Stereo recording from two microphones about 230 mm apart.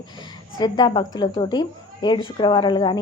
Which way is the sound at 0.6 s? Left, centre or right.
Centre.